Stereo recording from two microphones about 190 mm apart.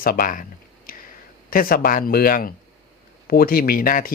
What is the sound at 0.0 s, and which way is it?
Speech, 50° left (ahead or behind).